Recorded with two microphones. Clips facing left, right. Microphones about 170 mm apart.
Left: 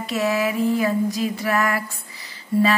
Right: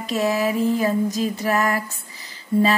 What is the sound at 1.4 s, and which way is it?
Speech, 20° right (ahead or behind).